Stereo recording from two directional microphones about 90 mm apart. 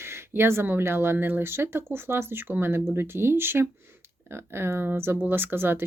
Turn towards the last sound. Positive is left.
turn(degrees=-25)  # may be behind; listen again after turning